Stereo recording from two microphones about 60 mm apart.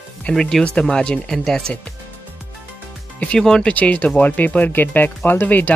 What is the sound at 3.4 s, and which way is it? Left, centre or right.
Speech, centre.